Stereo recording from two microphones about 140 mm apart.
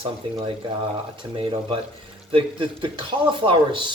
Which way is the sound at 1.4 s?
40° right (ahead or behind).